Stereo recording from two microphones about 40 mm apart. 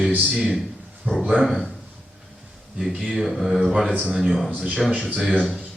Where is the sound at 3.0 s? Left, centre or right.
Centre.